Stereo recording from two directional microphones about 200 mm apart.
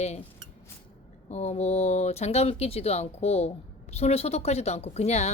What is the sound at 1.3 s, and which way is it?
Speech, 35° left (ahead or behind).